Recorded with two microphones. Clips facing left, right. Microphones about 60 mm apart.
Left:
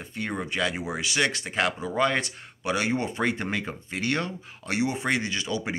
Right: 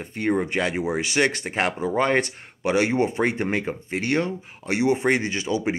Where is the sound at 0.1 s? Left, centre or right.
Right.